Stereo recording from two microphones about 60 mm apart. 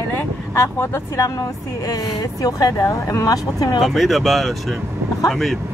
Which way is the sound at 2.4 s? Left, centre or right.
Left.